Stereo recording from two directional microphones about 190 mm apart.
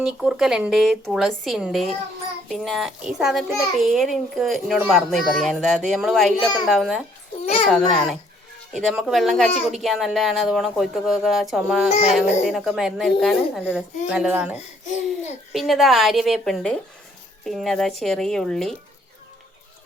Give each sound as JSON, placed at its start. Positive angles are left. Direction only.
{"t": 0.0, "sound": "a child's voice", "side_deg": -5}
{"t": 11.9, "sound": "speech", "side_deg": 35}
{"t": 12.5, "sound": "a child's voice", "side_deg": 0}
{"t": 15.5, "sound": "a child's voice", "side_deg": 0}